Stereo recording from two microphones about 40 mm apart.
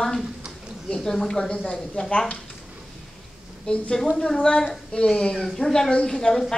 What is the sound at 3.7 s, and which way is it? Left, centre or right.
A woman's voice, left.